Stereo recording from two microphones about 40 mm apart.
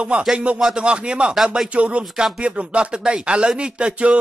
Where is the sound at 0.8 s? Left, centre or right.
Right.